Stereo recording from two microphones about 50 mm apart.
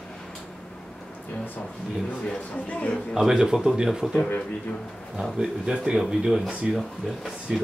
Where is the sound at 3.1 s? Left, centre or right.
Centre.